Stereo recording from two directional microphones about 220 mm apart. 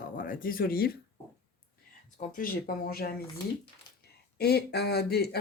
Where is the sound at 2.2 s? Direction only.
40° left (ahead or behind).